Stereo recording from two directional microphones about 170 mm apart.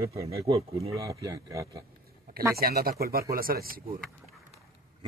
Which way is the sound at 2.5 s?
60° right (ahead or behind).